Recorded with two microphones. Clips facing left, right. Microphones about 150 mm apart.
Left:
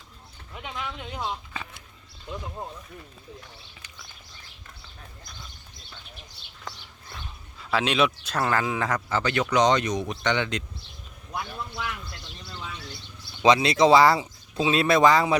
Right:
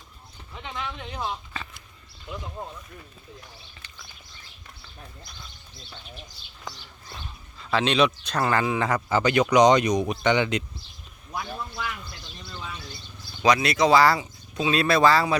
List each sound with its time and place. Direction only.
0.5 s speech: 5° left (ahead or behind)
7.6 s speech: 5° left (ahead or behind)
9.0 s speech: 15° right (ahead or behind)
12.8 s bird: 70° left (ahead or behind)
13.4 s speech: 25° left (ahead or behind)